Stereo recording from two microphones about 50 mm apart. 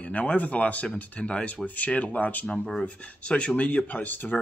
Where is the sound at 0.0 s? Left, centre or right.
Left.